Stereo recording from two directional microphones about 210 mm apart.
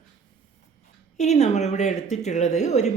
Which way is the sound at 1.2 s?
35° left (ahead or behind).